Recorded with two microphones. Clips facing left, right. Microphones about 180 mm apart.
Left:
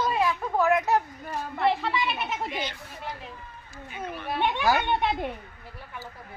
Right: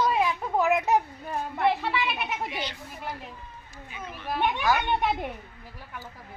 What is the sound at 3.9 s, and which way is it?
Speech, 55° left (ahead or behind).